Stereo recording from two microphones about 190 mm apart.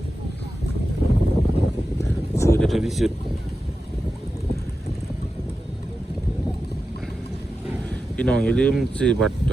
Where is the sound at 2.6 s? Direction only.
Centre (ahead or behind).